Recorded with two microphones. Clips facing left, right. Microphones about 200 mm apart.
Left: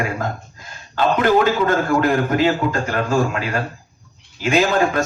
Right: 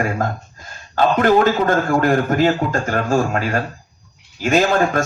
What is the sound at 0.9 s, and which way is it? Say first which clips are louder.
A man's voice: right 2 dB; 45° right (ahead or behind).